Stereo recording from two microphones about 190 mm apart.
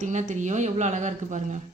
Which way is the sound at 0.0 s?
40° right (ahead or behind).